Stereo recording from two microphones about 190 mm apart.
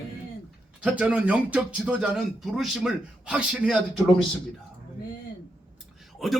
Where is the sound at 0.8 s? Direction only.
5° right (ahead or behind).